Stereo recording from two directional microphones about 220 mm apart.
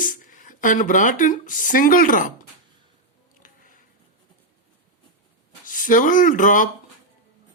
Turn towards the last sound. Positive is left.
turn(degrees=35)  # may be behind; listen again after turning